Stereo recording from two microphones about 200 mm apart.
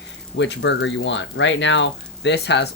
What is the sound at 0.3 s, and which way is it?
Speech, 60° left (ahead or behind).